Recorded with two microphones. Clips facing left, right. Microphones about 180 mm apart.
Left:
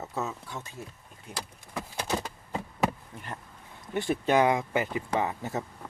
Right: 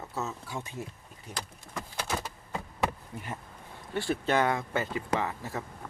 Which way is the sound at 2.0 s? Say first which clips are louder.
Left 3 dB; 15° left (ahead or behind).